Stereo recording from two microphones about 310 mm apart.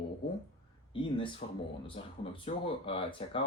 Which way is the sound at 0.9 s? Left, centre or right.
Centre.